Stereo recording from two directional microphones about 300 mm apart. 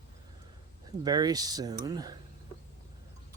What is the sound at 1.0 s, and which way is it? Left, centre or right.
Speech, centre.